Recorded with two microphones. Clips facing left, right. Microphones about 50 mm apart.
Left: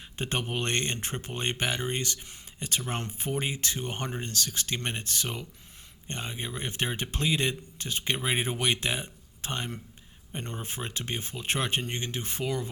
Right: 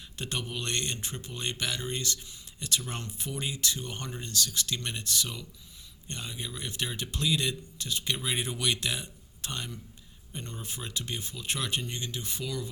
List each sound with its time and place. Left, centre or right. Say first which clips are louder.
0.2 s speech: left 4 dB; left